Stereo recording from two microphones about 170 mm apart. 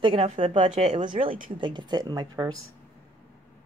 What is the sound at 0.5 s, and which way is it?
Speech, 45° right (ahead or behind).